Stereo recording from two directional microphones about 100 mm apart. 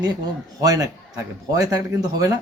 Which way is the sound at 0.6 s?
40° right (ahead or behind).